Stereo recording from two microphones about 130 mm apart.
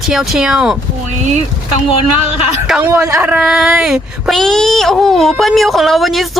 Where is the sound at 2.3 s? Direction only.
50° left (ahead or behind).